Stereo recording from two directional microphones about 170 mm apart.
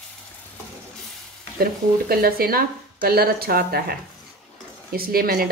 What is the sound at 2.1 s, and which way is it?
Speech, 65° right (ahead or behind).